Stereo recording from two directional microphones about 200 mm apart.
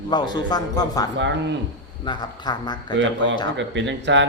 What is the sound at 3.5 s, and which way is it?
Speech, 65° right (ahead or behind).